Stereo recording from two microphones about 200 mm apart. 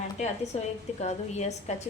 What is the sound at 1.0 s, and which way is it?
Speech, 35° left (ahead or behind).